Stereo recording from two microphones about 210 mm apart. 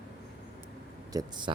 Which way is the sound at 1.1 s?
20° right (ahead or behind).